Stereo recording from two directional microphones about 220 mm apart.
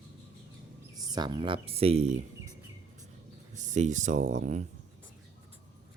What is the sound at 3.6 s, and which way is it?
Speech, 35° right (ahead or behind).